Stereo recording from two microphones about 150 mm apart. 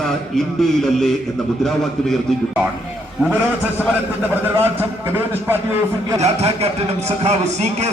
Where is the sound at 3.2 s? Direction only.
10° right (ahead or behind).